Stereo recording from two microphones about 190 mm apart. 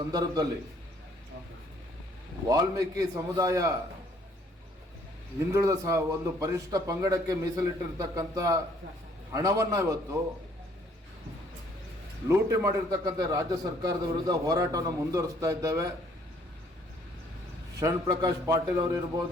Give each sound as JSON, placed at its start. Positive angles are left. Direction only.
{"t": 0.1, "sound": "a man's voice", "side_deg": -20}
{"t": 2.5, "sound": "a man's voice", "side_deg": -15}
{"t": 5.5, "sound": "a man's voice", "side_deg": -15}
{"t": 12.3, "sound": "a man's voice", "side_deg": -15}
{"t": 17.7, "sound": "a man's voice", "side_deg": -15}